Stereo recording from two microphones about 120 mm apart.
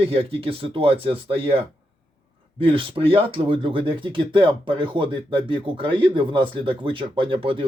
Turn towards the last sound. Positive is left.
turn(degrees=-45)  # may be behind; listen again after turning